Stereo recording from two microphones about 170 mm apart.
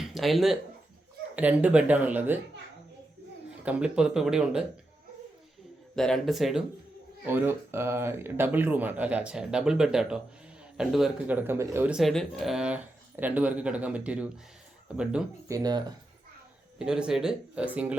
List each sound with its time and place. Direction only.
0.0 s speech: centre (ahead or behind)
3.6 s speech: 5° right (ahead or behind)
6.0 s speech: centre (ahead or behind)
7.3 s speech: 15° right (ahead or behind)
15.4 s speech: 20° right (ahead or behind)
16.7 s speech: 5° right (ahead or behind)